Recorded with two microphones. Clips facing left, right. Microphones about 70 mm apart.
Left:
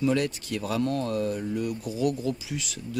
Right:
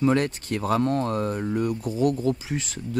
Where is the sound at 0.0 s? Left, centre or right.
Right.